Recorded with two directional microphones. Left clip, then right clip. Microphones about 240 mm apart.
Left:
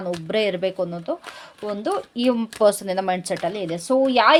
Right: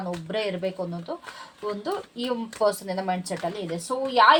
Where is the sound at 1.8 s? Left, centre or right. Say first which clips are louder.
Left 10 dB; left.